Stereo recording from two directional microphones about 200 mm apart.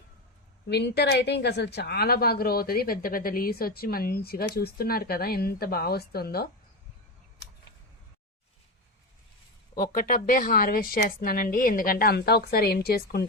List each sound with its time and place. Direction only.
0.7 s speech: 55° left (ahead or behind)
9.7 s speech: 45° left (ahead or behind)